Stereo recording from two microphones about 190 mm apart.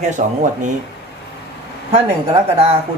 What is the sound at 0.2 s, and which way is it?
Speech, 40° right (ahead or behind).